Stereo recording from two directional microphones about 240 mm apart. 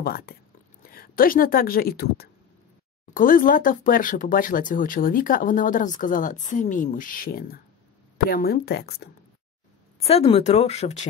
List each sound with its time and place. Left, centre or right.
0.0 s speech: left
9.9 s speech: left